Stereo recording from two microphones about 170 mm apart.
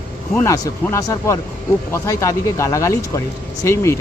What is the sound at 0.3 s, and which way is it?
Speech, 20° left (ahead or behind).